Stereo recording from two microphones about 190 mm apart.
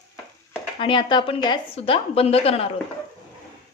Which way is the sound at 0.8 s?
25° left (ahead or behind).